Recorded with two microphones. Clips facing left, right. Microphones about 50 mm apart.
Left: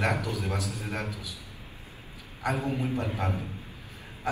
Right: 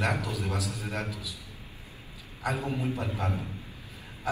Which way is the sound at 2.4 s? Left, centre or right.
Left.